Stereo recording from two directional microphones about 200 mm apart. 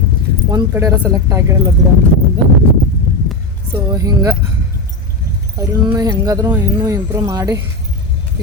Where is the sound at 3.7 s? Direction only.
15° right (ahead or behind).